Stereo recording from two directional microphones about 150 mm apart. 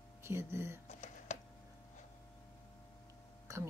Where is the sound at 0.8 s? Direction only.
55° left (ahead or behind).